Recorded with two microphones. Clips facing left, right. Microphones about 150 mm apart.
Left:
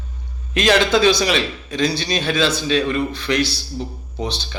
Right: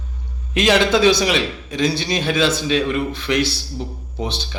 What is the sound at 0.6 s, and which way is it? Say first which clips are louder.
A man's voice: even; 20° right (ahead or behind).